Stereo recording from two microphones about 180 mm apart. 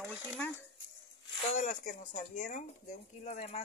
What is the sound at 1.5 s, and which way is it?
Speech, 40° left (ahead or behind).